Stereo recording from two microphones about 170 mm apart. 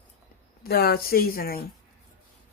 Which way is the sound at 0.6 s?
65° left (ahead or behind).